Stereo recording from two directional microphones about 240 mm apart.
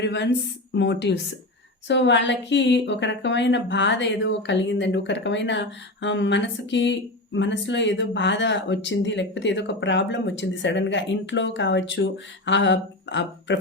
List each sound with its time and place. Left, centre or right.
0.0 s a woman's voice: left